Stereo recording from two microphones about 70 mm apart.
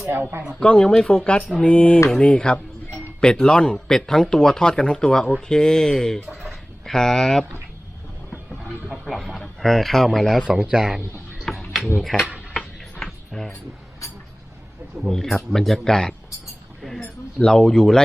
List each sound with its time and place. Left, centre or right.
0.1 s speech: right
0.6 s speech: centre
1.6 s a sound: centre
2.0 s speech: centre
6.3 s a sound: centre
8.9 s a man's voice: centre
10.6 s speech: centre
11.3 s mechanisms: centre
12.5 s a sound: centre
15.1 s speech: centre
16.8 s a sound: centre
17.4 s speech: centre